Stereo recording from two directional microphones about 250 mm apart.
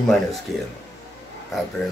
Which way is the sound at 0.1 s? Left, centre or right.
Centre.